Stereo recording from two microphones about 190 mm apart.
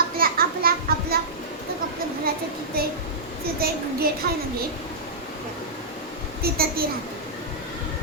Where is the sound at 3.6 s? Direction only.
55° right (ahead or behind).